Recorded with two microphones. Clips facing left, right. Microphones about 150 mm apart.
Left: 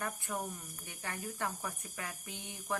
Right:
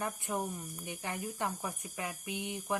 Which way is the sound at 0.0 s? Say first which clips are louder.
Right 3 dB; 20° right (ahead or behind).